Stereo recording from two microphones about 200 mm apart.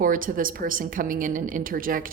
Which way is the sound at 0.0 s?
45° right (ahead or behind).